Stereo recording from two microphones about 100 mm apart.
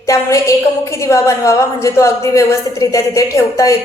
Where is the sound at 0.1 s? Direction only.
30° left (ahead or behind).